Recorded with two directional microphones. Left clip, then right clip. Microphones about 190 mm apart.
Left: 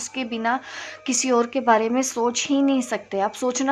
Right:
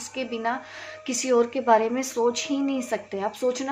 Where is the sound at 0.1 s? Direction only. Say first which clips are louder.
Left 3 dB; 35° left (ahead or behind).